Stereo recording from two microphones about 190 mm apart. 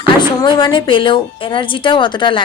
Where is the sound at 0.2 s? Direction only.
25° left (ahead or behind).